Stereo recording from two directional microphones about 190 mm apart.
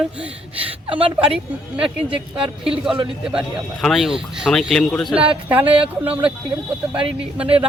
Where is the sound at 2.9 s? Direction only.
5° right (ahead or behind).